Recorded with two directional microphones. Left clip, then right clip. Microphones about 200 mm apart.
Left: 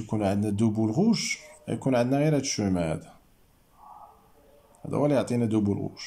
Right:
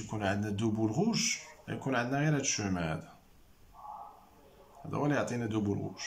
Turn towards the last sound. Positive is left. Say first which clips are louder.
# left 7 dB
turn(degrees=25)  # may be behind; listen again after turning